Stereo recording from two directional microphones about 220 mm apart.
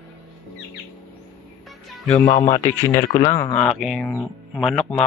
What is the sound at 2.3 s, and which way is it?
Speech, 35° left (ahead or behind).